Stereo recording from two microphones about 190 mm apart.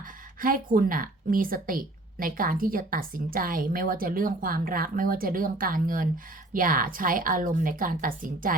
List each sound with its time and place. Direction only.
0.4 s a woman's voice: 45° right (ahead or behind)